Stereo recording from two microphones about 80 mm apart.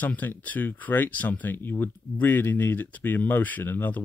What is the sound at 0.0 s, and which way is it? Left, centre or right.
Speech, left.